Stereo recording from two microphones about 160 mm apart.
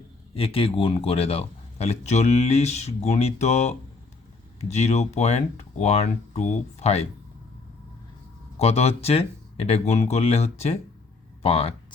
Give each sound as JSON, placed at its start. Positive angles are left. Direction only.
{"t": 0.3, "sound": "speech", "side_deg": 35}
{"t": 8.5, "sound": "speech", "side_deg": 40}